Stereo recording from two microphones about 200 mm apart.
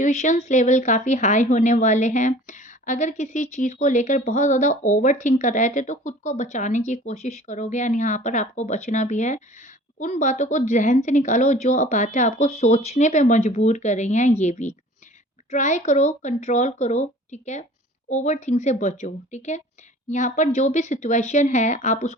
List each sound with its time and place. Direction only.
0.0 s speech: 35° left (ahead or behind)